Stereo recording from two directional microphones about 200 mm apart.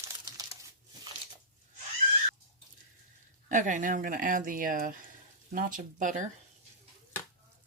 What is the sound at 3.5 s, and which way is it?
Speech, 40° right (ahead or behind).